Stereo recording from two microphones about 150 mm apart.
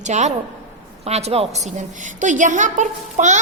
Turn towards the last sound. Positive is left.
turn(degrees=-55)  # may be behind; listen again after turning